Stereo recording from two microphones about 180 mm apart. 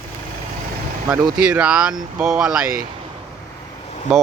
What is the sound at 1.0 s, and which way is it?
Speech, 20° right (ahead or behind).